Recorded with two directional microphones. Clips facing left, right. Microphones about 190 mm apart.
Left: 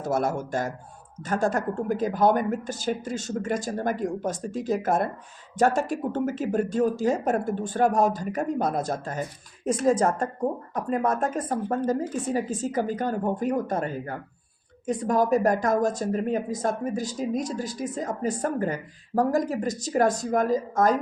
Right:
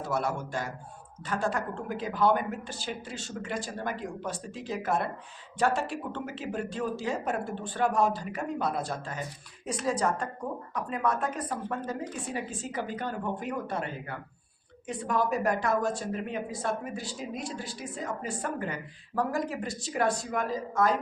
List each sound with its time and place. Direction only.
0.0 s a woman's voice: 45° left (ahead or behind)